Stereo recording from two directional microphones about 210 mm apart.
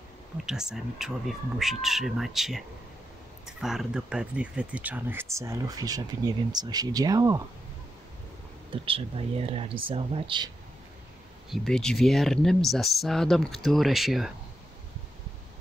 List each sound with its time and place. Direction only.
0.5 s speech: 5° right (ahead or behind)
8.8 s speech: 25° right (ahead or behind)
11.5 s speech: 5° left (ahead or behind)